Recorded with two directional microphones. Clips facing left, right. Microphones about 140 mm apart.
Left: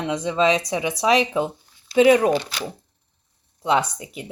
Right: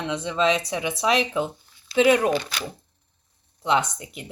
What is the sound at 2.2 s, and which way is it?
Speech, 15° left (ahead or behind).